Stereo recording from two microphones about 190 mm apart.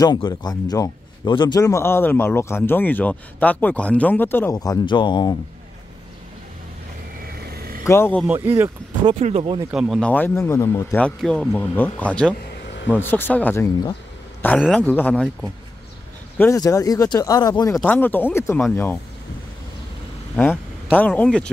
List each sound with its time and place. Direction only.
0.0 s a man's voice: 20° left (ahead or behind)
7.3 s vehicle: 55° right (ahead or behind)
7.8 s a man's voice: 15° left (ahead or behind)
8.3 s speech: 10° right (ahead or behind)
9.0 s speech: 30° right (ahead or behind)
9.7 s a man's voice: centre (ahead or behind)
16.3 s speech: 15° left (ahead or behind)
17.7 s a man's voice: 10° left (ahead or behind)
20.3 s speech: 10° left (ahead or behind)